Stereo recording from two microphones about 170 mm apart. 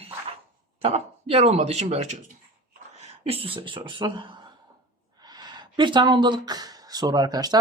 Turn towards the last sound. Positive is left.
turn(degrees=-25)  # may be behind; listen again after turning